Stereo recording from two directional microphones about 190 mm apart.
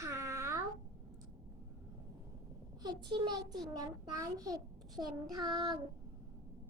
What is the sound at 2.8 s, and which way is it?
A child's voice, 25° right (ahead or behind).